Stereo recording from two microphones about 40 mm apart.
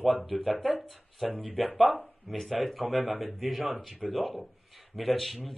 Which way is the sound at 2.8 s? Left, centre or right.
Right.